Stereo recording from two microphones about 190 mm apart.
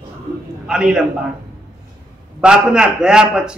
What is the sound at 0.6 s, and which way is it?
Speech, 5° right (ahead or behind).